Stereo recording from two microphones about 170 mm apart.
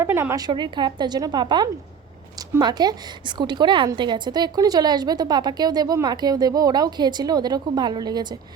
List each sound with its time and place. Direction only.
0.0 s a woman's voice: 15° right (ahead or behind)